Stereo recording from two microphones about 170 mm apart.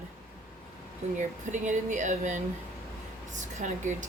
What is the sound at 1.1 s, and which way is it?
Speech, 45° right (ahead or behind).